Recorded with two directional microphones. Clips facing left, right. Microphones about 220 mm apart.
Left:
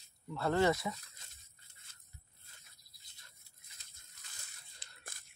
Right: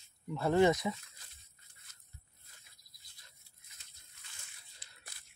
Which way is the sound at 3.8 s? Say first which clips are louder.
Right 1 dB; 35° left (ahead or behind).